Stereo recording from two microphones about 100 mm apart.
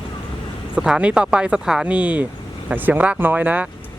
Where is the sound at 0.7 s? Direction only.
10° right (ahead or behind).